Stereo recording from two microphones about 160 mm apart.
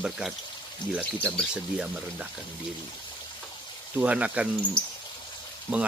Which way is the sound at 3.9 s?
10° right (ahead or behind).